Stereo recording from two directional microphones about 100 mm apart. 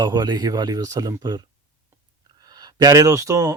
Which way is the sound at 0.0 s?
45° right (ahead or behind).